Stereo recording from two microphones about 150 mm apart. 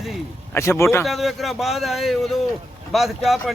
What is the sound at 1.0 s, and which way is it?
Speech, centre (ahead or behind).